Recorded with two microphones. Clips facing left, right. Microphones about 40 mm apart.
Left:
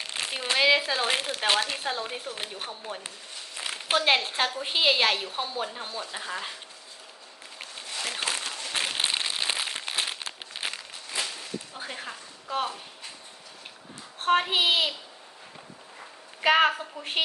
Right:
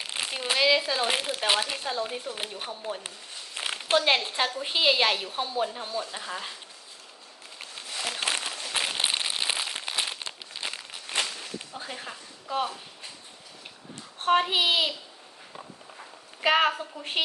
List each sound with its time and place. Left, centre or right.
0.0 s crumpling: centre
0.5 s a woman's voice: centre
0.9 s a woman's voice: centre
1.8 s a woman's voice: centre
7.6 s a sound: centre
8.4 s crumpling: centre
10.5 s crumpling: left
11.1 s a sound: right
11.9 s a woman's voice: centre
14.2 s a woman's voice: centre
16.4 s a woman's voice: centre